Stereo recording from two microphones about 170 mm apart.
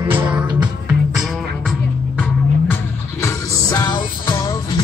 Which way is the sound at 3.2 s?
20° left (ahead or behind).